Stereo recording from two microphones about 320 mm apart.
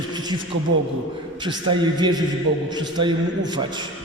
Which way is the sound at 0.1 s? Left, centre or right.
Centre.